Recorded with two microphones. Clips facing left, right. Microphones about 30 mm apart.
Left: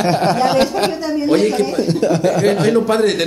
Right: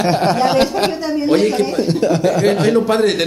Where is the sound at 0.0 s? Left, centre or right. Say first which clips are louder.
Even; centre.